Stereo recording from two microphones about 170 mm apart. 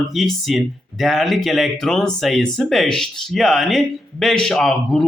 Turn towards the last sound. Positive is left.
turn(degrees=0)  # may be behind; listen again after turning